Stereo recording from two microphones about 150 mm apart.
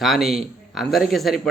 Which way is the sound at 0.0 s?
Centre (ahead or behind).